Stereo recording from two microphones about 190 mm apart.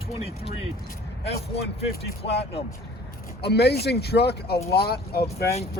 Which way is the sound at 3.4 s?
60° left (ahead or behind).